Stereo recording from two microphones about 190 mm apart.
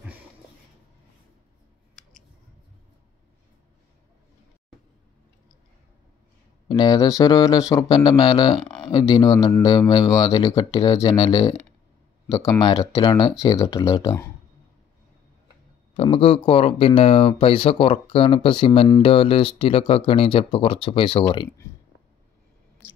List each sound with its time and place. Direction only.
6.7 s speech: 20° left (ahead or behind)
16.0 s speech: 30° left (ahead or behind)
22.8 s a sound: 5° right (ahead or behind)